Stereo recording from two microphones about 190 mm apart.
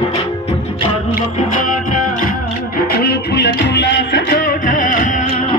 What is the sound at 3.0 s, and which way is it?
Music, 60° left (ahead or behind).